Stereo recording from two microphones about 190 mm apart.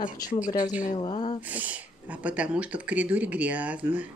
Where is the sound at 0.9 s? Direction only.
25° left (ahead or behind).